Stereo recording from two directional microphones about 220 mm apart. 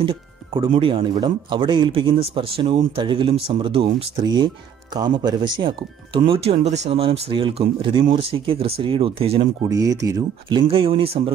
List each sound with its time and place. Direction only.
0.0 s speech: 25° right (ahead or behind)